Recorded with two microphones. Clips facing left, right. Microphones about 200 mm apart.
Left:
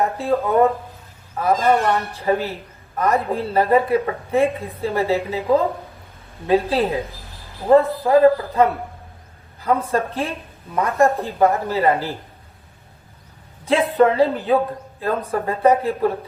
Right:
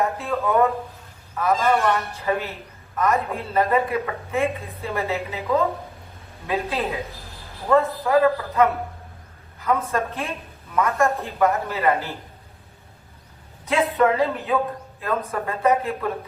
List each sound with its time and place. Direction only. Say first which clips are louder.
0.2 s a man's voice: left 6 dB; 30° left (ahead or behind)
13.7 s speech: left 4 dB; 30° left (ahead or behind)